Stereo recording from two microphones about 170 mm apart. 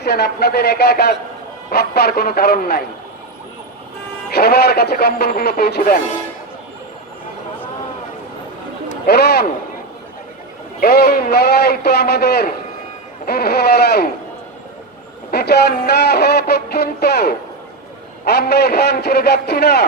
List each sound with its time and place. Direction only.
0.0 s music: 70° left (ahead or behind)
4.4 s music: 70° left (ahead or behind)
9.0 s music: 75° left (ahead or behind)
10.8 s music: 70° left (ahead or behind)
15.3 s music: 70° left (ahead or behind)